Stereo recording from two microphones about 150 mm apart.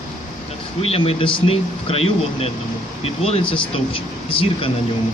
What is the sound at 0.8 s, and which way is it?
Speech, 40° left (ahead or behind).